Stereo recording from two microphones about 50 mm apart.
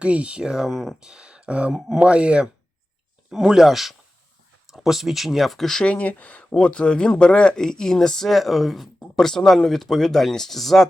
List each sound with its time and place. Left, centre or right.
0.0 s speech: right
0.7 s speech: centre
1.0 s speech: centre
3.4 s speech: centre
5.8 s speech: left
6.5 s speech: centre